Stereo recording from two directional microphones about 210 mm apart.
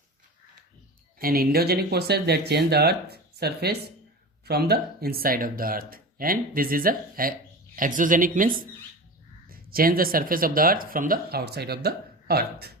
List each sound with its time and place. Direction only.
1.2 s speech: 45° right (ahead or behind)